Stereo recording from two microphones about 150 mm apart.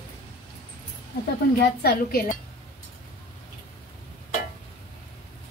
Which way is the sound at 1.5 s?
90° left.